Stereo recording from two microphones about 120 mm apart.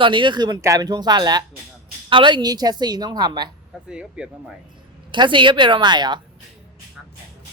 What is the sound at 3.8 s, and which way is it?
Speech, 10° right (ahead or behind).